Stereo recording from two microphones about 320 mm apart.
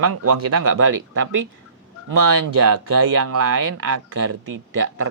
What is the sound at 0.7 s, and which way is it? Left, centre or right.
Speech, right.